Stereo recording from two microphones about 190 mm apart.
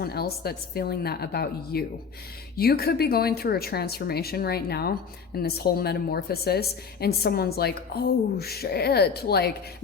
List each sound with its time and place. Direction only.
0.0 s speech: 55° left (ahead or behind)